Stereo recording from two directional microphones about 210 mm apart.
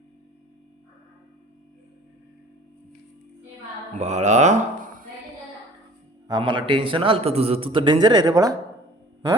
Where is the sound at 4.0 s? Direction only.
35° right (ahead or behind).